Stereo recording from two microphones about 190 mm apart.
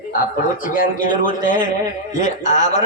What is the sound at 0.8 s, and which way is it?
A man's voice, 45° left (ahead or behind).